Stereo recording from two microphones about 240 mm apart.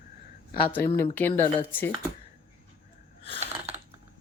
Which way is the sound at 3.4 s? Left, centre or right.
Right.